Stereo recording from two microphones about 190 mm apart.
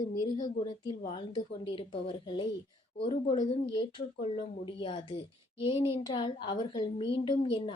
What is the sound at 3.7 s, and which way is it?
A woman's voice, 25° left (ahead or behind).